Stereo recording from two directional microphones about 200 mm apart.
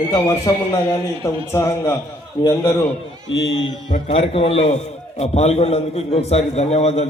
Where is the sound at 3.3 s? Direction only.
65° left (ahead or behind).